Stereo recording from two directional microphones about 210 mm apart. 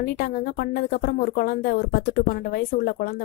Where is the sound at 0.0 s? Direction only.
45° left (ahead or behind).